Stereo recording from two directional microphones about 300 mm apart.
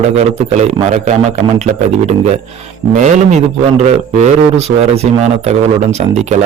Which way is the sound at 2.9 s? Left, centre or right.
Right.